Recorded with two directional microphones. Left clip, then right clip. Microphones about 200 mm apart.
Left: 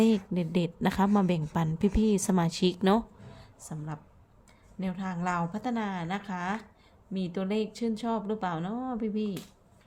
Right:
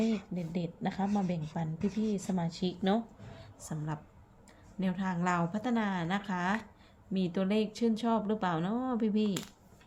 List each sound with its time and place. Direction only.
0.0 s a woman's voice: 35° left (ahead or behind)
3.6 s speech: centre (ahead or behind)